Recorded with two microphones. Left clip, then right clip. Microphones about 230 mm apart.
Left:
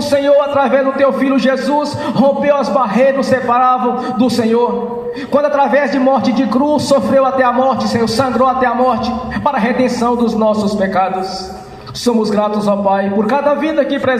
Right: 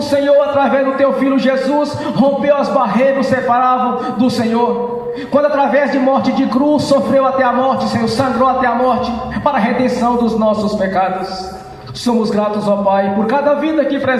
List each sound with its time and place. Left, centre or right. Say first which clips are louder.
0.1 s a man's voice: even; left
12.0 s a man's voice: left 1 dB; left